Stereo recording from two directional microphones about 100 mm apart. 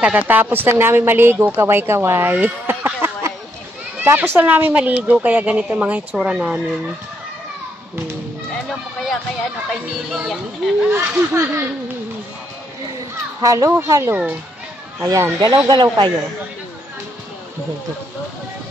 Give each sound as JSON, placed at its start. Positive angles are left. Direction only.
{"t": 0.0, "sound": "a woman's voice", "side_deg": -15}
{"t": 2.3, "sound": "a sound", "side_deg": -20}
{"t": 4.0, "sound": "speech", "side_deg": -25}
{"t": 9.7, "sound": "speech", "side_deg": -5}
{"t": 10.9, "sound": "a woman's voice", "side_deg": -30}
{"t": 13.4, "sound": "a child's voice", "side_deg": -35}
{"t": 15.7, "sound": "a man's voice", "side_deg": -50}